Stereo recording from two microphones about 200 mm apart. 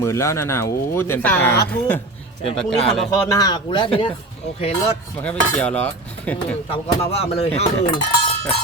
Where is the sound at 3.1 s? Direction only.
15° left (ahead or behind).